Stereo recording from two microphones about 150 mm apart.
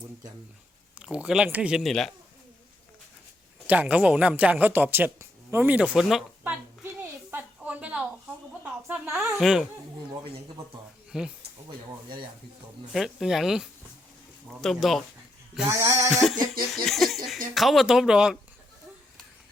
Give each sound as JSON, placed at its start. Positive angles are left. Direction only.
{"t": 0.9, "sound": "speech", "side_deg": -10}
{"t": 3.7, "sound": "speech", "side_deg": -10}
{"t": 7.0, "sound": "a sound", "side_deg": -15}
{"t": 8.6, "sound": "speech", "side_deg": -5}
{"t": 11.1, "sound": "speech", "side_deg": -5}
{"t": 12.0, "sound": "speech", "side_deg": -35}
{"t": 12.9, "sound": "speech", "side_deg": 0}
{"t": 15.6, "sound": "a sound", "side_deg": -20}
{"t": 16.1, "sound": "speech", "side_deg": 0}